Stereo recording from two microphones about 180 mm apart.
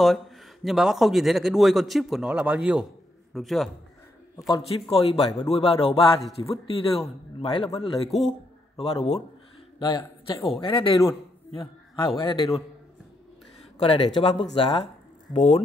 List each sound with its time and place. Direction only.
0.7 s speech: centre (ahead or behind)
4.5 s a man's voice: 30° left (ahead or behind)
9.8 s a man's voice: 25° left (ahead or behind)
13.7 s a man's voice: 30° left (ahead or behind)